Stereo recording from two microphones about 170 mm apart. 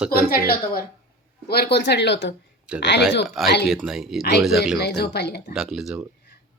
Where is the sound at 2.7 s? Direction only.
5° right (ahead or behind).